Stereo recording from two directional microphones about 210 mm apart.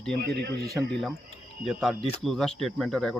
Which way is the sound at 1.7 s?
Centre (ahead or behind).